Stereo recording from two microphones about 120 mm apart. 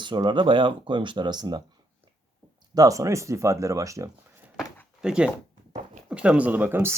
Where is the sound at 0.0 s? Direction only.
40° right (ahead or behind).